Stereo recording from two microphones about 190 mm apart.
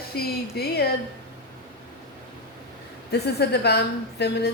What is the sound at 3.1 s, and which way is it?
A woman's voice, 60° left (ahead or behind).